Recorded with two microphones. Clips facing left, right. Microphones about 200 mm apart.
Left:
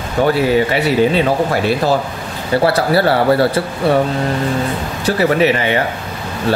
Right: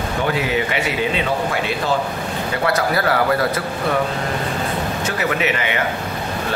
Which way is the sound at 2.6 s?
30° left (ahead or behind).